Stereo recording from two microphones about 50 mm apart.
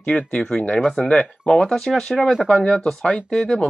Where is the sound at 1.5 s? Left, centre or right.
Centre.